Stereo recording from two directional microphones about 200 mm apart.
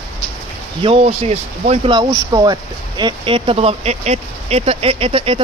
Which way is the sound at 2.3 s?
20° right (ahead or behind).